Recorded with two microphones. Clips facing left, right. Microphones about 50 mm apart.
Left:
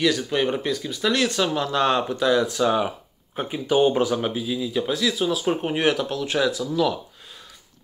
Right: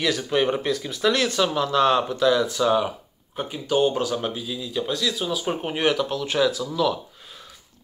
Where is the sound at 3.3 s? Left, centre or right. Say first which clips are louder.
Left 2 dB; centre.